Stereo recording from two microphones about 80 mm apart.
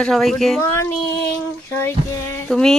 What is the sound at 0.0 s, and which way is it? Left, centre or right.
Speech, centre.